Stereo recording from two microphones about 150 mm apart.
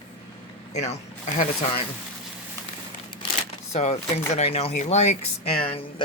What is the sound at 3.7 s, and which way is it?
Speech, 45° left (ahead or behind).